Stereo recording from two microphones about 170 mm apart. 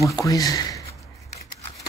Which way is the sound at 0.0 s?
20° left (ahead or behind).